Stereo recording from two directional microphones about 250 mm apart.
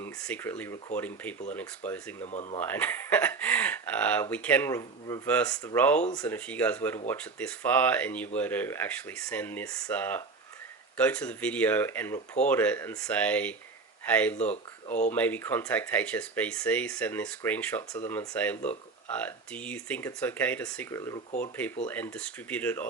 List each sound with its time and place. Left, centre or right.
0.0 s speech: centre
2.2 s speech: left
2.6 s speech: centre